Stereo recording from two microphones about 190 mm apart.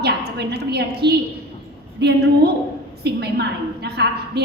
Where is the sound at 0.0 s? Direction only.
60° right (ahead or behind).